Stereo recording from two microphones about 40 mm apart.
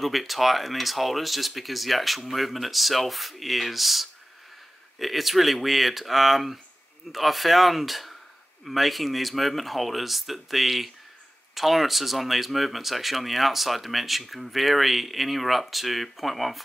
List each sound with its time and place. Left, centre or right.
0.0 s speech: centre